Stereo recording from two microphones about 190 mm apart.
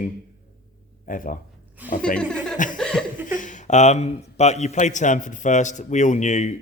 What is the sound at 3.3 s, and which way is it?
A man's voice, 40° left (ahead or behind).